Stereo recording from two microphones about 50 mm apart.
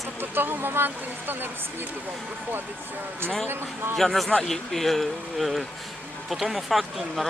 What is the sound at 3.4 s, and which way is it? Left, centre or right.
Speech, right.